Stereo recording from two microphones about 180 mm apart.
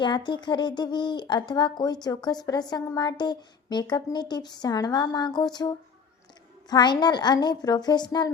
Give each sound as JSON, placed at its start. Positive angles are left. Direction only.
{"t": 0.0, "sound": "speech", "side_deg": 25}